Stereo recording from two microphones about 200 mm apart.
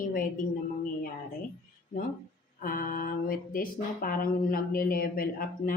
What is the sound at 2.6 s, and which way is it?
Speech, 45° left (ahead or behind).